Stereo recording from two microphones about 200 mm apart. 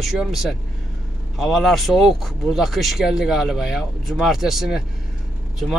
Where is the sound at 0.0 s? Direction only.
Centre (ahead or behind).